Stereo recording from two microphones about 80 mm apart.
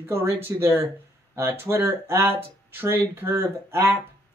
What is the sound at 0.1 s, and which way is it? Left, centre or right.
Speech, right.